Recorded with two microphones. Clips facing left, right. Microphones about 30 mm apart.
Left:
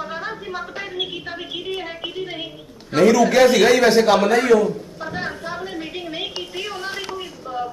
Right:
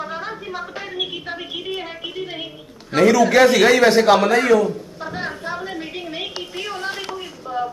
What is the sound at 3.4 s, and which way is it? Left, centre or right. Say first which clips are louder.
Speech: even; right.